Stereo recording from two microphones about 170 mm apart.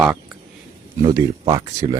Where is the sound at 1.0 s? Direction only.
20° right (ahead or behind).